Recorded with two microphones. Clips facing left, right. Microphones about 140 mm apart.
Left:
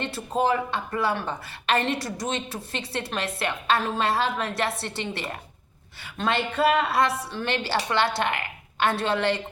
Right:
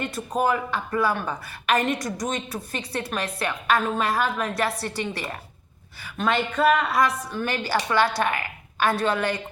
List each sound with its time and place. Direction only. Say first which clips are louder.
0.0 s a woman's voice: right 1 dB; 25° left (ahead or behind)